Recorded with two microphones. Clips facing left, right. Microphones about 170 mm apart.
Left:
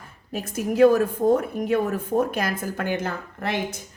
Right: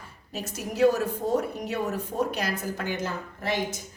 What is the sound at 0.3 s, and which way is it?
A woman's voice, 50° left (ahead or behind).